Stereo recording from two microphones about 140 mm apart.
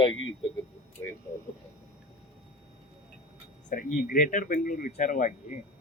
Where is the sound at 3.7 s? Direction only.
80° left.